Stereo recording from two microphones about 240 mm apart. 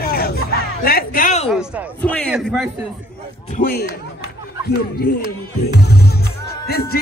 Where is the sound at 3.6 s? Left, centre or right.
Left.